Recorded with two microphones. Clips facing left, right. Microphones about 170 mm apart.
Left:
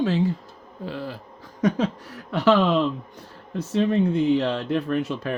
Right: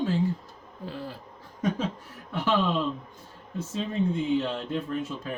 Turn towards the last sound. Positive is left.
turn(degrees=75)  # may be behind; listen again after turning